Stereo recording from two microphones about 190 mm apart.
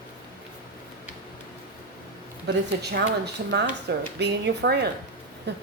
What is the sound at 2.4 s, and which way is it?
Speech, 60° right (ahead or behind).